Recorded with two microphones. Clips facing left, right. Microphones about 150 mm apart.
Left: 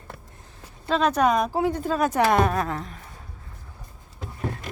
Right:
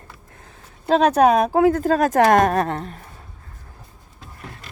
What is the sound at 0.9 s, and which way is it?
Speech, 60° right (ahead or behind).